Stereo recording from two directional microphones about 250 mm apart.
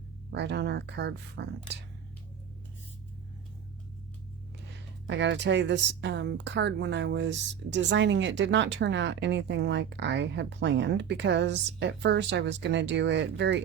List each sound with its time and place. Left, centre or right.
0.3 s a woman's voice: right
5.0 s a woman's voice: right